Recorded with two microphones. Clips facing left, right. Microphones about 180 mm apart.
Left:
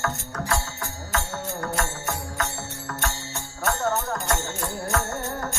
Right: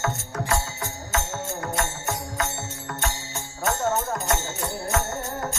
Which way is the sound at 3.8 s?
20° right (ahead or behind).